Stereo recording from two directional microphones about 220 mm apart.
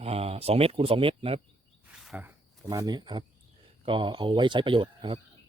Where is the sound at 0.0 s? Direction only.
25° right (ahead or behind).